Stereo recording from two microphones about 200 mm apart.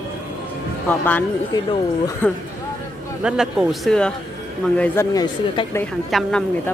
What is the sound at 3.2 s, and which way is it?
A woman's voice, 5° right (ahead or behind).